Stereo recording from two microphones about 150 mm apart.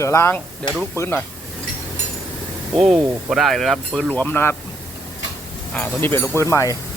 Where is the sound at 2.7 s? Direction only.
Centre (ahead or behind).